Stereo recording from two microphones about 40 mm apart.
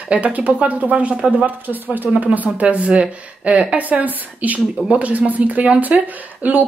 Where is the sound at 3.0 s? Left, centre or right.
Right.